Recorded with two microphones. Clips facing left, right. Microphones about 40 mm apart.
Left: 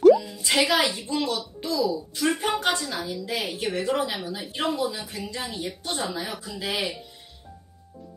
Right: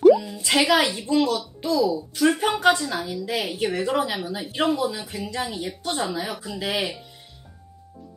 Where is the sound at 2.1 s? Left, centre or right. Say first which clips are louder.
Right 6 dB; centre.